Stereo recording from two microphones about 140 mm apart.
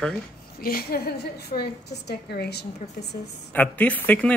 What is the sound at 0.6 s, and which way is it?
A woman's voice, 90° left.